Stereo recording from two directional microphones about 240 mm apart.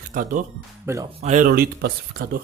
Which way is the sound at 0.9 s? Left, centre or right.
Centre.